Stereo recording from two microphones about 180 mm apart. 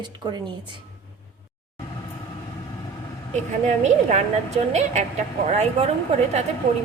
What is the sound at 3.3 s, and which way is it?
A woman's voice, 40° right (ahead or behind).